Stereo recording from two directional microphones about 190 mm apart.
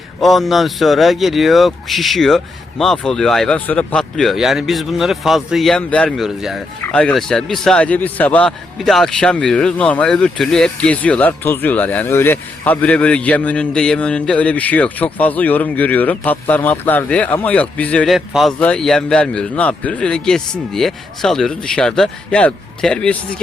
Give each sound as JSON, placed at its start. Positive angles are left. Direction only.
{"t": 0.2, "sound": "speech", "side_deg": 0}